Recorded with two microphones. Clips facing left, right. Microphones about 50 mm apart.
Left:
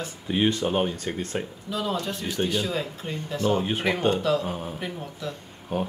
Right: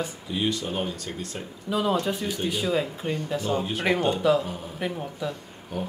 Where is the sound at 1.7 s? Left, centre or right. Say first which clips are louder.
Right 5 dB; centre.